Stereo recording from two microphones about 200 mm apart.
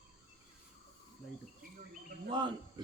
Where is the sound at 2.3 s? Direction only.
25° right (ahead or behind).